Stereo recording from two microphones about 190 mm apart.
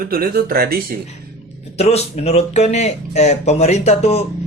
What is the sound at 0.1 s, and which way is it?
Speech, 50° right (ahead or behind).